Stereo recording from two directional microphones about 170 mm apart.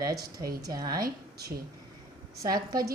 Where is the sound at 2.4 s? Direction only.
20° right (ahead or behind).